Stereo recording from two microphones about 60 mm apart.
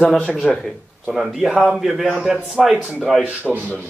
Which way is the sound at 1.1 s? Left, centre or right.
Centre.